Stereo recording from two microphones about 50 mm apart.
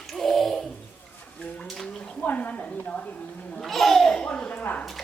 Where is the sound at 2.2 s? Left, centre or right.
Left.